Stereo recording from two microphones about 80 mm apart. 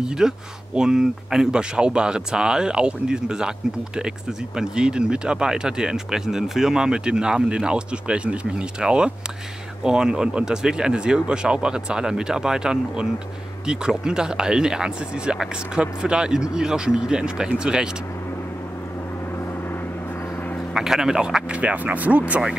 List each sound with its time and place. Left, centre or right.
0.0 s speech: centre
19.4 s gong: left
20.7 s speech: centre